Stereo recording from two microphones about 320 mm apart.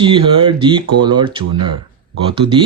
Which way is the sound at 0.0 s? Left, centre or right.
Centre.